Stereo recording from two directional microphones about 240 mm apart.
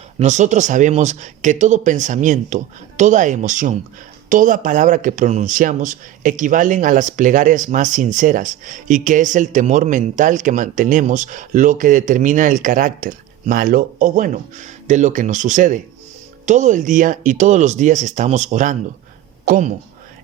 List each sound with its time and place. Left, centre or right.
0.2 s speech: right